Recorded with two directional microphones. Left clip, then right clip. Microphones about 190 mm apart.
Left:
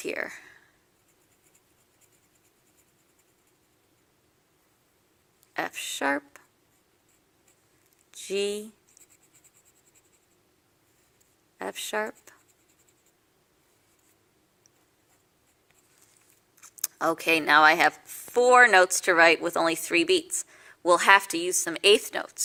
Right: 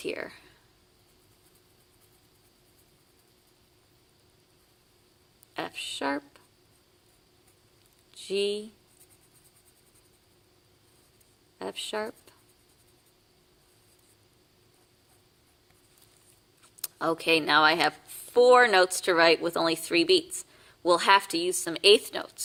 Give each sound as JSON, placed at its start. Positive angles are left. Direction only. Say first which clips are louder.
{"t": 0.0, "sound": "speech", "louder": "left 3 dB", "side_deg": 15}
{"t": 5.5, "sound": "speech", "louder": "left 3 dB", "side_deg": 15}
{"t": 8.1, "sound": "speech", "louder": "even", "side_deg": 15}
{"t": 11.6, "sound": "speech", "louder": "left 3 dB", "side_deg": 15}
{"t": 16.6, "sound": "a woman's voice", "louder": "left 3 dB", "side_deg": 15}